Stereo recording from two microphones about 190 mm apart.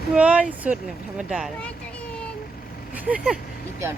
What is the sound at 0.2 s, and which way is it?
Speech, 5° right (ahead or behind).